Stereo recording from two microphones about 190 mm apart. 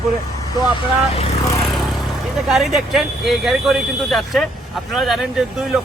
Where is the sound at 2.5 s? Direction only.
Centre (ahead or behind).